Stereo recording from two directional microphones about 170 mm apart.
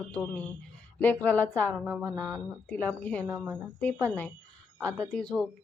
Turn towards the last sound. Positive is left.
turn(degrees=5)  # may be behind; listen again after turning